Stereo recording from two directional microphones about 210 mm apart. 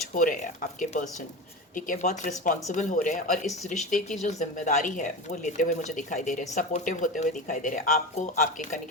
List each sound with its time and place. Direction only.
0.1 s speech: 40° left (ahead or behind)